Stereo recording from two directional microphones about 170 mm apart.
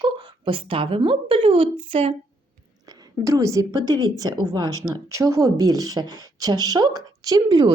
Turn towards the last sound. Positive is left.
turn(degrees=-20)  # may be behind; listen again after turning